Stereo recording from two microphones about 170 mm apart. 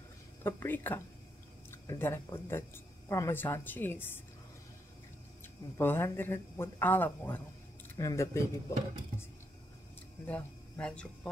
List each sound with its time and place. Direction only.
0.4 s speech: 15° left (ahead or behind)
5.4 s speech: 15° left (ahead or behind)
10.2 s speech: 5° left (ahead or behind)